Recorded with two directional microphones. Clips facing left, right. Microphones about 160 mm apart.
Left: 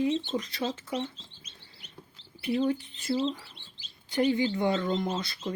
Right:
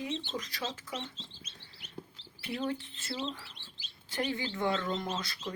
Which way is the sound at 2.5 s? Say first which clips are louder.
Left 8 dB; 10° left (ahead or behind).